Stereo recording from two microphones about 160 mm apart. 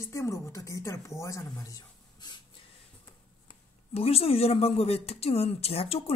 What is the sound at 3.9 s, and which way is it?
Speech, 40° left (ahead or behind).